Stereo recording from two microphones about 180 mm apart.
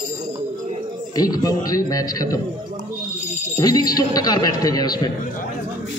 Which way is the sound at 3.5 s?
20° left (ahead or behind).